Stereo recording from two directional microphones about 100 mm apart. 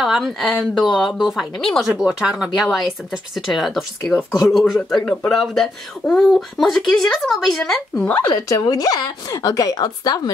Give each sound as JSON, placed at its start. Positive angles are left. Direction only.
{"t": 0.0, "sound": "speech", "side_deg": 0}
{"t": 5.0, "sound": "speech", "side_deg": 10}
{"t": 7.9, "sound": "speech", "side_deg": 15}
{"t": 8.4, "sound": "a woman's voice", "side_deg": 30}